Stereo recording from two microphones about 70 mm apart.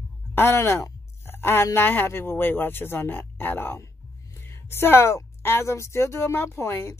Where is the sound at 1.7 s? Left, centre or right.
Left.